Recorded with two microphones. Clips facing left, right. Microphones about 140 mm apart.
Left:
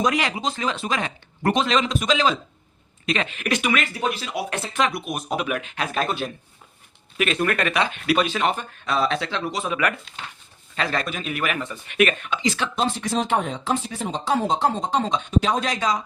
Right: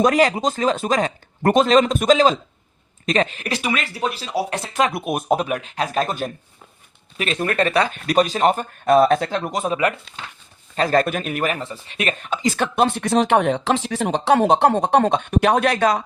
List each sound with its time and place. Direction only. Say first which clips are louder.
0.0 s speech: right 6 dB; 40° right (ahead or behind)
4.9 s speech: right 7 dB; 55° right (ahead or behind)
7.2 s speech: right 1 dB; 30° right (ahead or behind); by 9.7 s 50° right (ahead or behind)
10.8 s speech: right 8 dB; 45° right (ahead or behind); by 16.0 s 60° right (ahead or behind)